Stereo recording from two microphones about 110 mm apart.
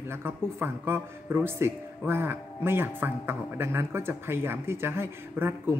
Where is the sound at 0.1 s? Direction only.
20° right (ahead or behind).